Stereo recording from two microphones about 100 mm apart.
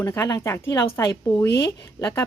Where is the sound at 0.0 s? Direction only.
35° left (ahead or behind).